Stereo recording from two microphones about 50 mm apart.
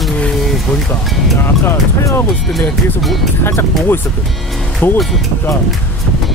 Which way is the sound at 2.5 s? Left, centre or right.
Centre.